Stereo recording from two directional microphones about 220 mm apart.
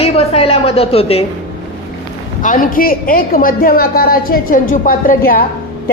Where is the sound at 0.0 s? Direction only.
25° left (ahead or behind).